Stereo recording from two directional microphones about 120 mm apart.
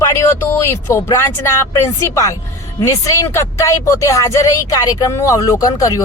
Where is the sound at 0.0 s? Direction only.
25° left (ahead or behind).